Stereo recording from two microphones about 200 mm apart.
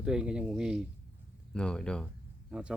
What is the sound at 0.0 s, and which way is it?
Speech, 5° right (ahead or behind).